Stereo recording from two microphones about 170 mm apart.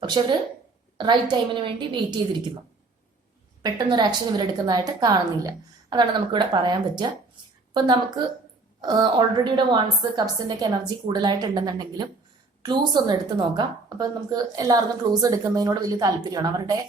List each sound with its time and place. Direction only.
0.0 s a woman's voice: 25° right (ahead or behind)
3.6 s a woman's voice: 25° right (ahead or behind)